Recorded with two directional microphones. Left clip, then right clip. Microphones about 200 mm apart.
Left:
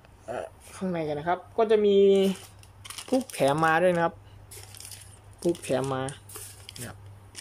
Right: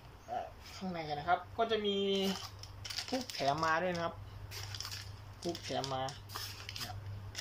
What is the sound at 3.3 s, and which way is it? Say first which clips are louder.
Speech: left 9 dB; 60° left (ahead or behind).